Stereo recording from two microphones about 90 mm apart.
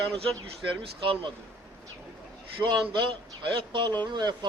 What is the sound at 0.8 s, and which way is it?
Speech, 90° right.